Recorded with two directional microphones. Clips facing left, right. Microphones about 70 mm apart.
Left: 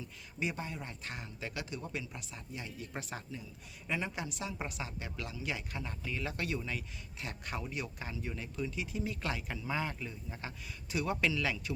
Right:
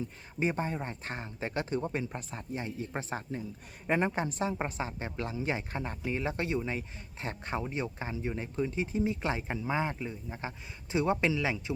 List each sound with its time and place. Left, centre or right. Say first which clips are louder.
0.3 s speech: right 7 dB; right